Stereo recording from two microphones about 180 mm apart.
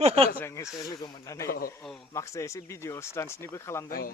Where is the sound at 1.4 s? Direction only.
55° left (ahead or behind).